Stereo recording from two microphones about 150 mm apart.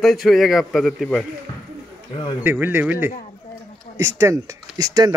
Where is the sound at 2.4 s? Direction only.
15° right (ahead or behind).